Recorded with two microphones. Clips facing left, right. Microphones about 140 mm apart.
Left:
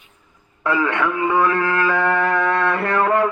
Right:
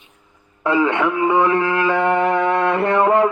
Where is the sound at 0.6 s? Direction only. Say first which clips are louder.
Right 3 dB; 20° right (ahead or behind).